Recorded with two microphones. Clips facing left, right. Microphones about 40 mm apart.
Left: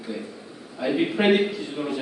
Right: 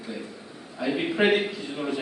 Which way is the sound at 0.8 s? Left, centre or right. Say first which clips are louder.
Left 2 dB; centre.